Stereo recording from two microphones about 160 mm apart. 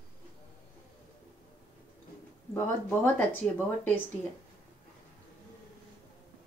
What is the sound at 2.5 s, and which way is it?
Speech, 15° left (ahead or behind).